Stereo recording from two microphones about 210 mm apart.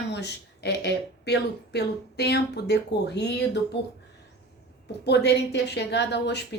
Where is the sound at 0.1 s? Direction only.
55° left (ahead or behind).